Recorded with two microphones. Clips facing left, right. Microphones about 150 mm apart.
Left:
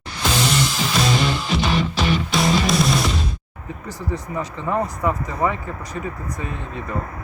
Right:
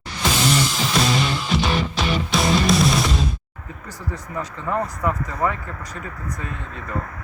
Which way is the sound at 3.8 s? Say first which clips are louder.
Left 5 dB; 15° left (ahead or behind).